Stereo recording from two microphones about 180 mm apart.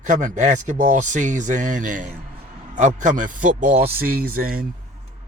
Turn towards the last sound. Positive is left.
turn(degrees=-55)  # may be behind; listen again after turning